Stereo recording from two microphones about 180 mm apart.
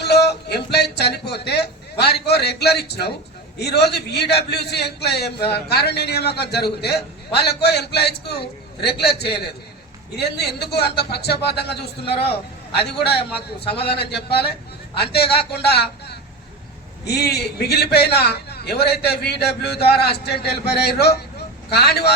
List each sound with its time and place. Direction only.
0.0 s a man's voice: 65° left (ahead or behind)
10.4 s a man's voice: 65° left (ahead or behind)
13.7 s a man's voice: 65° left (ahead or behind)